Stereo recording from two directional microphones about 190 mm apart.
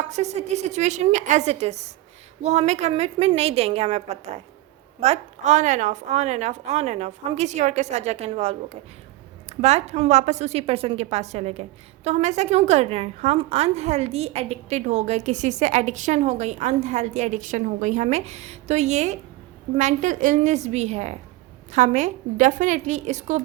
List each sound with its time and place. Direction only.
0.1 s a woman's voice: 35° right (ahead or behind)